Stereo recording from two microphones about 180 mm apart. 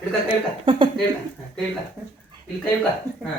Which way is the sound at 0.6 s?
30° right (ahead or behind).